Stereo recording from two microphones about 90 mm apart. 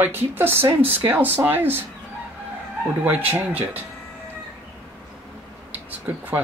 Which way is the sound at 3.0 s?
20° right (ahead or behind).